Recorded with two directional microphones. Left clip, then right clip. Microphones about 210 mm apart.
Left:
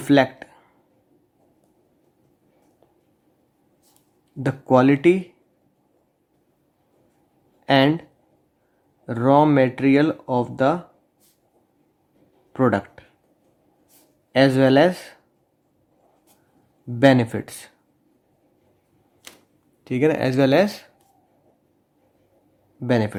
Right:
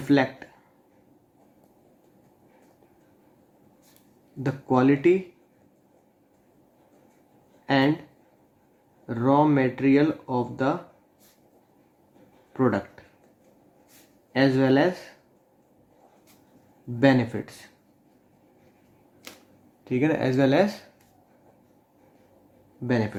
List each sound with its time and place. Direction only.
0.0 s speech: 45° left (ahead or behind)
4.4 s speech: 45° left (ahead or behind)
7.6 s speech: 45° left (ahead or behind)
9.0 s speech: 45° left (ahead or behind)
12.5 s speech: 45° left (ahead or behind)
14.3 s speech: 45° left (ahead or behind)
17.0 s speech: 45° left (ahead or behind)
19.8 s speech: 40° left (ahead or behind)
22.9 s speech: 45° left (ahead or behind)